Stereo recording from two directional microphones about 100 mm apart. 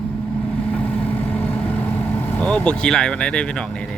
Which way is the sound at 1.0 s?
15° left (ahead or behind).